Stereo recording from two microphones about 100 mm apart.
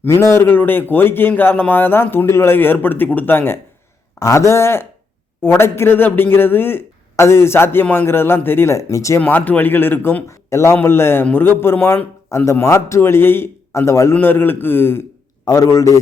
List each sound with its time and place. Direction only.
0.0 s a man's voice: 25° left (ahead or behind)
9.2 s a man's voice: 15° left (ahead or behind)
15.4 s a man's voice: 35° left (ahead or behind)